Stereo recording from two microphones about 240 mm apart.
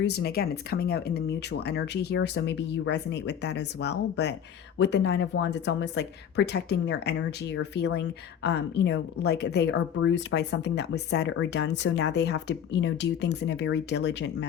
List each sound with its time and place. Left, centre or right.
0.0 s speech: left